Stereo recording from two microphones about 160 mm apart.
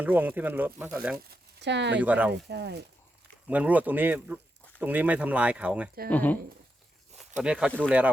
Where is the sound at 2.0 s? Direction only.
10° right (ahead or behind).